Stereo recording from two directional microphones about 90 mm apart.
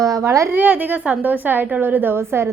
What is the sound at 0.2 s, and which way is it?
Speech, 35° right (ahead or behind).